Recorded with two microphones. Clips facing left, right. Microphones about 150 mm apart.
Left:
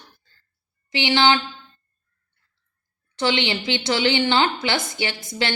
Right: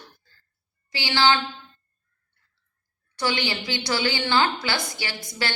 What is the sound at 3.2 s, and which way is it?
A woman's voice, 20° left (ahead or behind).